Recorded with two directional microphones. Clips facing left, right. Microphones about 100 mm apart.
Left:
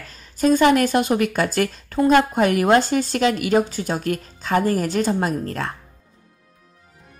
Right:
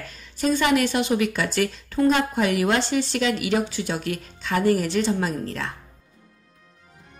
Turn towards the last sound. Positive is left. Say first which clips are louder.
# left 3 dB
turn(degrees=50)  # may be behind; listen again after turning